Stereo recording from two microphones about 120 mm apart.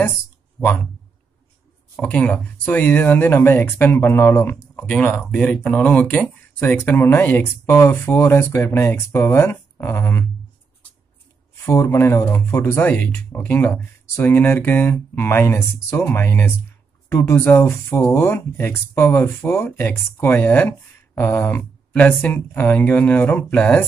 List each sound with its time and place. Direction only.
2.0 s speech: 10° left (ahead or behind)
11.6 s speech: 25° left (ahead or behind); by 23.8 s 10° left (ahead or behind)